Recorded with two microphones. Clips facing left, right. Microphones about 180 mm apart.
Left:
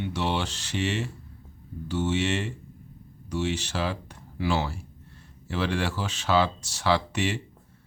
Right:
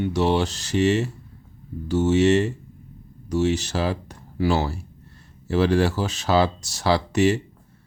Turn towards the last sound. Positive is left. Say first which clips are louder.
# right 6 dB
turn(degrees=-40)  # may be behind; listen again after turning